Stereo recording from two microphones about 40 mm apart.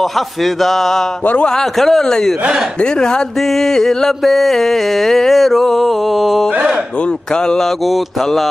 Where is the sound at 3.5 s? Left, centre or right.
Centre.